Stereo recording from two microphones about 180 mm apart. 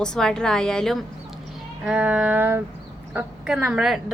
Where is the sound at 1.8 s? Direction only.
5° right (ahead or behind).